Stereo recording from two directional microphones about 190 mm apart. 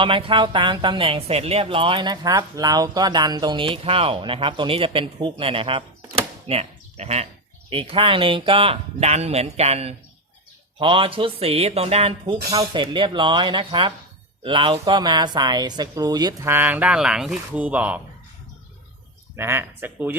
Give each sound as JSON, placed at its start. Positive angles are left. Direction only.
{"t": 0.0, "sound": "speech", "side_deg": -25}
{"t": 19.4, "sound": "speech", "side_deg": -15}